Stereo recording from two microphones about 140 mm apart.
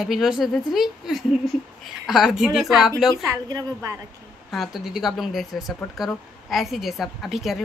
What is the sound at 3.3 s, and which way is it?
Speech, 30° right (ahead or behind).